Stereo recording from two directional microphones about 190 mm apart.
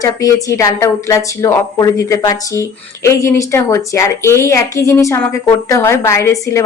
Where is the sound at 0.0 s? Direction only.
20° left (ahead or behind).